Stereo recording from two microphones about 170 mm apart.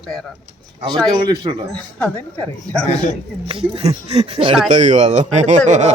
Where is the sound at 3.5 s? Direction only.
35° right (ahead or behind).